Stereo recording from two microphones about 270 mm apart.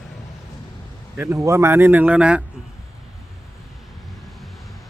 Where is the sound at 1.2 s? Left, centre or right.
Centre.